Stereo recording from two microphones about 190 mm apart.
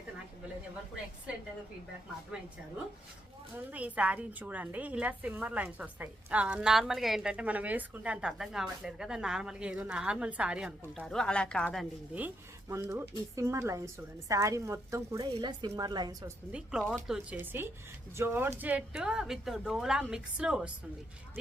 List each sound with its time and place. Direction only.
3.7 s a woman's voice: 10° right (ahead or behind)
12.1 s a woman's voice: 10° right (ahead or behind)
16.5 s a woman's voice: 5° right (ahead or behind)